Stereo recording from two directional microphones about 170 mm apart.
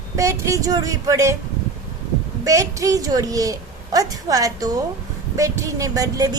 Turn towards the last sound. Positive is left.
turn(degrees=-20)  # may be behind; listen again after turning